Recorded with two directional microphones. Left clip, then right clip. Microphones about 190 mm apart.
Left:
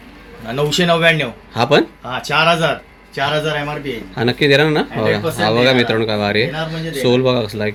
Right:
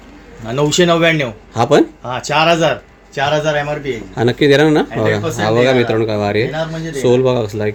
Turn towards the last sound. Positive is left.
turn(degrees=-15)  # may be behind; listen again after turning